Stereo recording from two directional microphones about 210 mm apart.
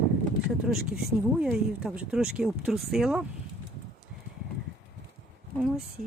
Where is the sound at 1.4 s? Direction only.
Centre (ahead or behind).